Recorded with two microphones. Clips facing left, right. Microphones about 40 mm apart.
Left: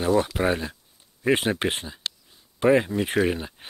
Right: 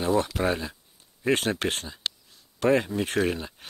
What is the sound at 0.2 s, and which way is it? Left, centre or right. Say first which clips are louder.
Speech: left 2 dB; centre.